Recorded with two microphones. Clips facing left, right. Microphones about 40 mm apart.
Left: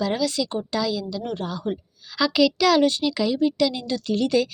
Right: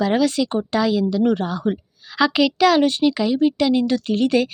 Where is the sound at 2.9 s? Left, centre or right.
Right.